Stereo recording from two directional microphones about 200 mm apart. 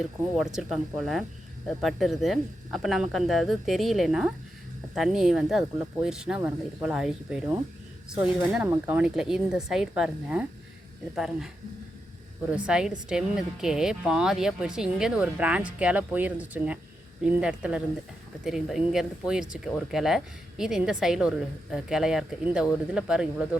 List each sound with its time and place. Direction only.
0.3 s speech: centre (ahead or behind)